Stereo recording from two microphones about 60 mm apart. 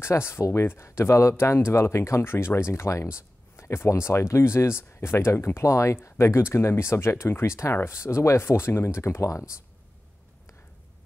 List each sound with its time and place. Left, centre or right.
0.0 s speech: left